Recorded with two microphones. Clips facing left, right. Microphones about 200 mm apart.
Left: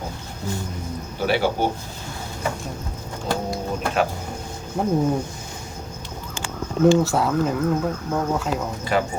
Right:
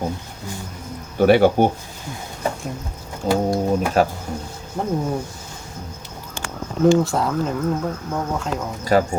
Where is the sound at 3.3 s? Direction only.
45° right (ahead or behind).